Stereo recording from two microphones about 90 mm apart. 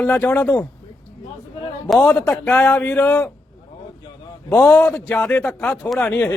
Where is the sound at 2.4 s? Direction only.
15° left (ahead or behind).